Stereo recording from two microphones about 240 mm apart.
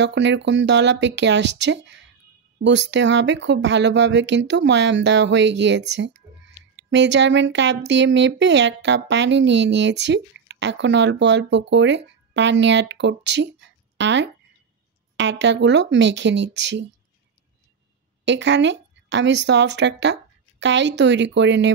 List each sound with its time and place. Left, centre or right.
0.0 s speech: right
18.2 s speech: right